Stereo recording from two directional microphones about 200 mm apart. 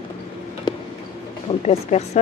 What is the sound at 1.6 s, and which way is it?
Speech, 35° left (ahead or behind).